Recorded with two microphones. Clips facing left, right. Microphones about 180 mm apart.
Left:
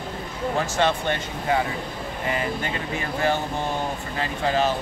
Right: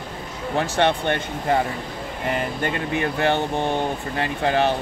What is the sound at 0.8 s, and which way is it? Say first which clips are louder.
Speech: right 3 dB; 60° right (ahead or behind).